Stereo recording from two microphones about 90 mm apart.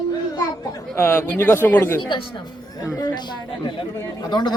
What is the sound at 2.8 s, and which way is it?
Speech, 45° left (ahead or behind).